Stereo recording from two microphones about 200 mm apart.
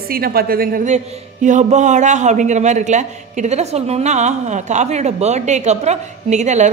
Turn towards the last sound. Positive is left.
turn(degrees=-35)  # may be behind; listen again after turning